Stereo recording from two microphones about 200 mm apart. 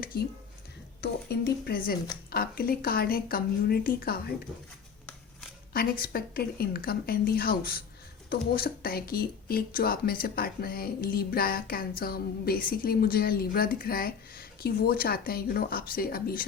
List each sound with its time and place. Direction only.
0.0 s a sound: 45° left (ahead or behind)
1.0 s speech: 55° left (ahead or behind)
5.7 s speech: 50° left (ahead or behind)